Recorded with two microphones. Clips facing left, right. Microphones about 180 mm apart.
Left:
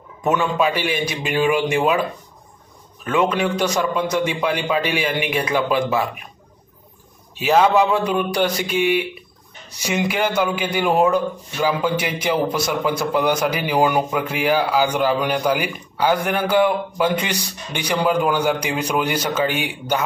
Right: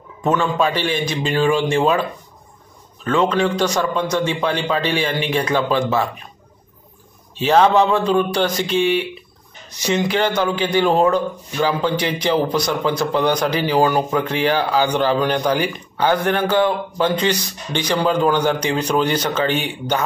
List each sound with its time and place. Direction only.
0.2 s a man's voice: 15° left (ahead or behind)
7.3 s a man's voice: 10° left (ahead or behind)